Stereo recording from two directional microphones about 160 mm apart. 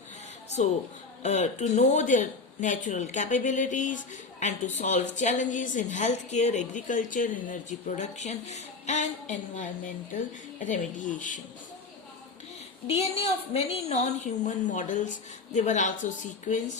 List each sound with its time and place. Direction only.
0.6 s speech: 45° left (ahead or behind)
12.9 s speech: 40° left (ahead or behind)